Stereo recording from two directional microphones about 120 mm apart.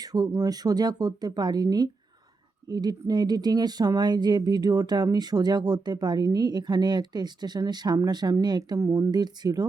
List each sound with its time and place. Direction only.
0.0 s speech: 30° right (ahead or behind)